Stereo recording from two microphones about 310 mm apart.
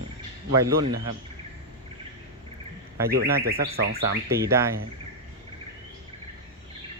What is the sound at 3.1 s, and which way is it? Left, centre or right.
Bird, right.